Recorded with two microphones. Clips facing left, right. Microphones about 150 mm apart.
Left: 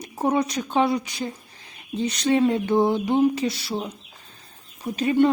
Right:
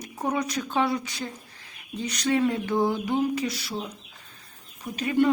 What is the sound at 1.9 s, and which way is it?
Speech, 25° left (ahead or behind).